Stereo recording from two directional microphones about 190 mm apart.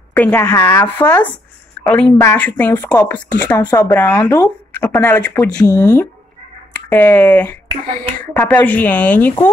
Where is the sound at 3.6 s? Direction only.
20° left (ahead or behind).